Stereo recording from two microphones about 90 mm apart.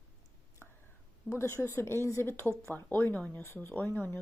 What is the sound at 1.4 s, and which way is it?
Speech, 30° left (ahead or behind).